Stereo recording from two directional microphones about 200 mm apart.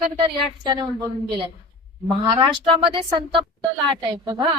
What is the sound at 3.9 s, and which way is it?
Speech, 20° right (ahead or behind).